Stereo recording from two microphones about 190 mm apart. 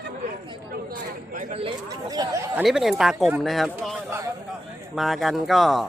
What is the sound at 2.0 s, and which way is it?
Speech, 20° right (ahead or behind).